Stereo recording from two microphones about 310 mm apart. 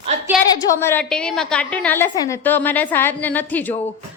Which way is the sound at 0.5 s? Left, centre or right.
Centre.